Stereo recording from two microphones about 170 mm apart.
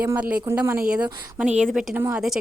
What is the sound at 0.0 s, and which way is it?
Speech, 10° right (ahead or behind).